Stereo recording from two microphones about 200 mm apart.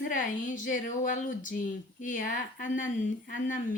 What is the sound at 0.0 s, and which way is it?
Speech, 40° left (ahead or behind).